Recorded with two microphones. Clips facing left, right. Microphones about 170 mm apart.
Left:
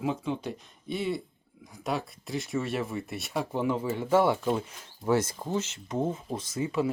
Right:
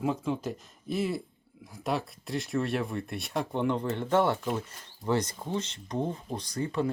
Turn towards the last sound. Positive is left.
turn(degrees=5)  # may be behind; listen again after turning